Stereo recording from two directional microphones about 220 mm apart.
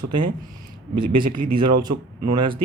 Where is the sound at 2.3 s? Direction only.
20° right (ahead or behind).